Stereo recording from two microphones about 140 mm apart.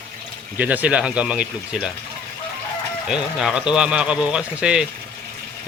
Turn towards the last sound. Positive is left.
turn(degrees=-5)  # may be behind; listen again after turning